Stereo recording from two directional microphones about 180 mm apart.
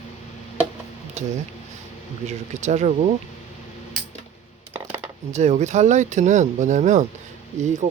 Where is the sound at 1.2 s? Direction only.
40° right (ahead or behind).